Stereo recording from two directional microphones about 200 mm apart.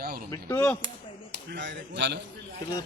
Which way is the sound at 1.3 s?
60° right (ahead or behind).